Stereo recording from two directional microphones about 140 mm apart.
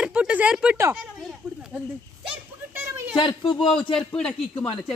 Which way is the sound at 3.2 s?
35° left (ahead or behind).